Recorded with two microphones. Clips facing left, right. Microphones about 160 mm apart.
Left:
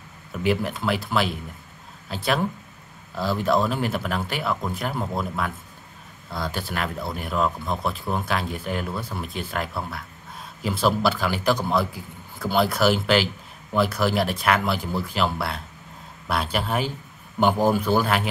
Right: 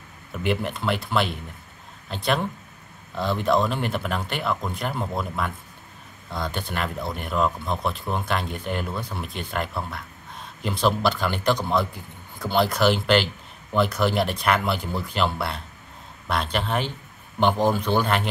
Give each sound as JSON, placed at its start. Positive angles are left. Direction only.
{"t": 0.4, "sound": "a man's voice", "side_deg": 0}